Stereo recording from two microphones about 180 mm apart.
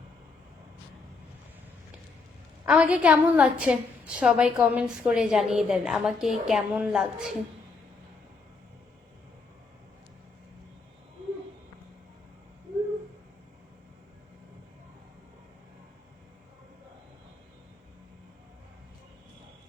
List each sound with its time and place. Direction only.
2.6 s a woman's voice: 5° right (ahead or behind)